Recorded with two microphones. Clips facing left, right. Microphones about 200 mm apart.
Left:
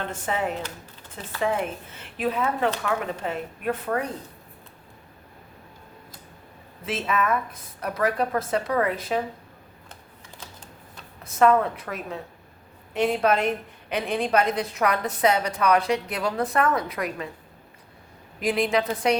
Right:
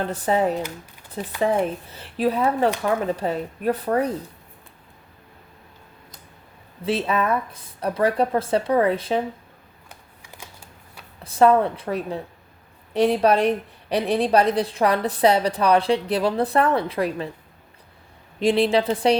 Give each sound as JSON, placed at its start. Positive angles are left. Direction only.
{"t": 0.0, "sound": "a woman's voice", "side_deg": -35}
{"t": 6.8, "sound": "a woman's voice", "side_deg": -30}
{"t": 9.9, "sound": "typewriter", "side_deg": -10}
{"t": 11.2, "sound": "a woman's voice", "side_deg": -30}
{"t": 18.3, "sound": "a woman's voice", "side_deg": -30}